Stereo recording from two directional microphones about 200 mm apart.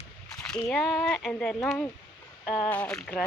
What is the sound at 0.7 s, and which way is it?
Speech, centre (ahead or behind).